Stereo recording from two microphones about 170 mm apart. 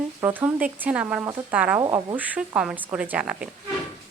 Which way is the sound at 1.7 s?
20° right (ahead or behind).